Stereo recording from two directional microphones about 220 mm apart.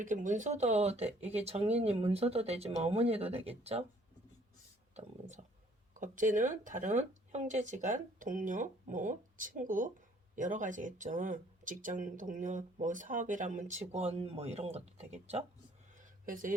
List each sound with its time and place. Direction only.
0.0 s speech: 35° right (ahead or behind)
5.9 s speech: 35° right (ahead or behind)
16.0 s a sound: 40° right (ahead or behind)